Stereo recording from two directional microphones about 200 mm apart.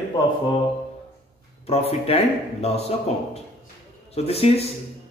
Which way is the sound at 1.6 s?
30° left (ahead or behind).